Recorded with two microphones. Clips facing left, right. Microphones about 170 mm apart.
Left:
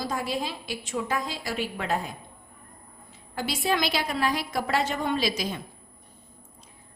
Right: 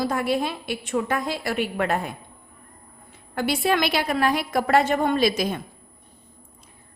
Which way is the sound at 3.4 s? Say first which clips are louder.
Right 5 dB; 60° right (ahead or behind).